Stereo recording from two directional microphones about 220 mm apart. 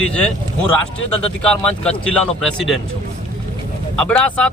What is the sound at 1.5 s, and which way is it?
Speech, 5° left (ahead or behind).